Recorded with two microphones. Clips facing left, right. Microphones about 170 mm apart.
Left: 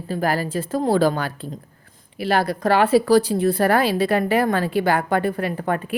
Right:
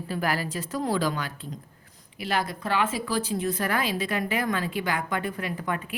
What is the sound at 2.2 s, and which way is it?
Speech, 65° left (ahead or behind).